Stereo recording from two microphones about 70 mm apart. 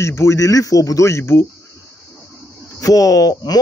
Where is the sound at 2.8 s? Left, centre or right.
Left.